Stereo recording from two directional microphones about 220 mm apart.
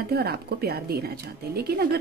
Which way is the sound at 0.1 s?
45° right (ahead or behind).